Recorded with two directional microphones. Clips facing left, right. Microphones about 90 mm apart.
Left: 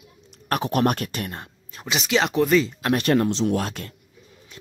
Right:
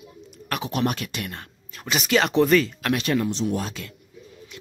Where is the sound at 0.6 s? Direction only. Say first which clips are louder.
Left 3 dB; 50° left (ahead or behind).